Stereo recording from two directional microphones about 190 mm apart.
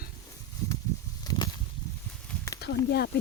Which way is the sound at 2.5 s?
60° left (ahead or behind).